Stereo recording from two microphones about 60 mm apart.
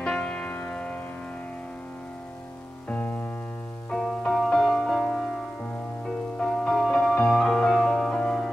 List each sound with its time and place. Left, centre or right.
0.0 s music: centre
3.9 s music: centre
6.3 s music: centre